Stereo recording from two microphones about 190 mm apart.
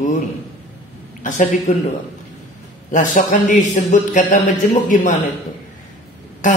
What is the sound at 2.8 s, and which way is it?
A man's voice, 45° left (ahead or behind).